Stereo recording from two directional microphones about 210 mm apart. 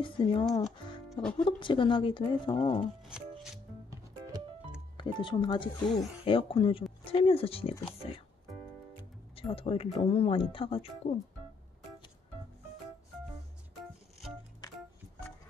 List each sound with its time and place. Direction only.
0.0 s speech: 25° left (ahead or behind)
3.0 s shuffling cards: centre (ahead or behind)
4.9 s speech: 20° left (ahead or behind)
9.3 s speech: 25° left (ahead or behind)